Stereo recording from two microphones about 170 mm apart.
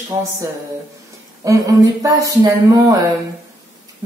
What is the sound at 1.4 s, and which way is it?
Speech, 20° right (ahead or behind).